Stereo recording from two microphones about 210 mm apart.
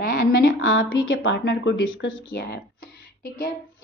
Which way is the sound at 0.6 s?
55° left (ahead or behind).